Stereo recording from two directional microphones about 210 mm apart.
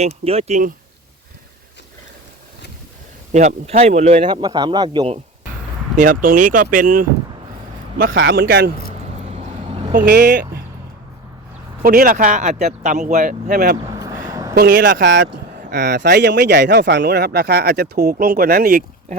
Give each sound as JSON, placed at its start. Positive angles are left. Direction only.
{"t": 0.0, "sound": "speech", "side_deg": -30}
{"t": 3.3, "sound": "speech", "side_deg": -30}
{"t": 4.4, "sound": "speech", "side_deg": -20}
{"t": 6.0, "sound": "speech", "side_deg": -40}
{"t": 8.1, "sound": "speech", "side_deg": -55}
{"t": 8.9, "sound": "vehicle", "side_deg": -30}
{"t": 9.9, "sound": "speech", "side_deg": -40}
{"t": 10.2, "sound": "speech", "side_deg": -50}
{"t": 11.8, "sound": "speech", "side_deg": -45}
{"t": 13.7, "sound": "a sound", "side_deg": -20}
{"t": 14.5, "sound": "speech", "side_deg": -45}